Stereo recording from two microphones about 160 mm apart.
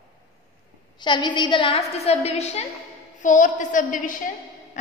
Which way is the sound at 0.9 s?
30° left (ahead or behind).